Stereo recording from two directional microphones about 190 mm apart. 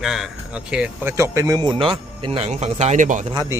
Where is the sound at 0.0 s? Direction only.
Centre (ahead or behind).